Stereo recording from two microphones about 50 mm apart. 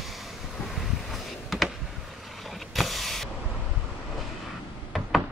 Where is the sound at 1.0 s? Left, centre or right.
Centre.